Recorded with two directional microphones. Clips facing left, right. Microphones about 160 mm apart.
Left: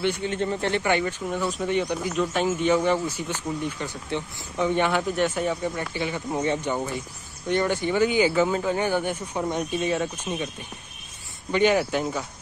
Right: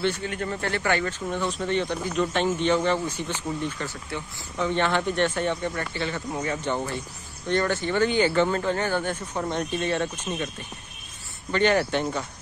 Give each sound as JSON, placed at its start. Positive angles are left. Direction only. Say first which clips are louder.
{"t": 0.0, "sound": "speech", "louder": "left 2 dB", "side_deg": 15}
{"t": 11.5, "sound": "speech", "louder": "left 1 dB", "side_deg": 10}